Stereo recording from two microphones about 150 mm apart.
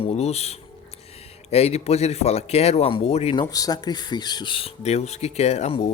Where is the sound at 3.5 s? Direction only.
25° left (ahead or behind).